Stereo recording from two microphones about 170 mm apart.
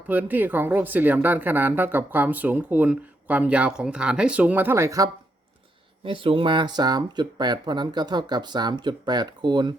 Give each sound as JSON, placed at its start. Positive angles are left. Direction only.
{"t": 0.1, "sound": "speech", "side_deg": -10}
{"t": 6.1, "sound": "speech", "side_deg": -30}